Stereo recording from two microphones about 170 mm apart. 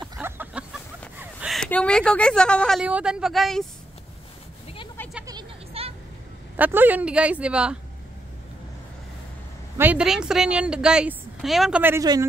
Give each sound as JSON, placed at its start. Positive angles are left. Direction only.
{"t": 0.1, "sound": "a sound", "side_deg": -10}
{"t": 1.4, "sound": "speech", "side_deg": 0}
{"t": 2.8, "sound": "a woman's voice", "side_deg": -5}
{"t": 5.7, "sound": "vehicle", "side_deg": -35}
{"t": 6.5, "sound": "speech", "side_deg": -10}
{"t": 9.8, "sound": "a woman's voice", "side_deg": -10}